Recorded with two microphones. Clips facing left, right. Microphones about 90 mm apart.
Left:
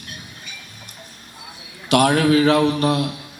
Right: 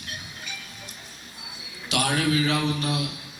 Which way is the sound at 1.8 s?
55° left (ahead or behind).